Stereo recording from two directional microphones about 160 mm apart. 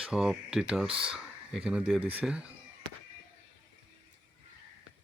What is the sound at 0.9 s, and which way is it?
Speech, 35° right (ahead or behind).